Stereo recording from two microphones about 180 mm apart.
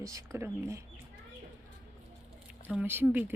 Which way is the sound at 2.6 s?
10° right (ahead or behind).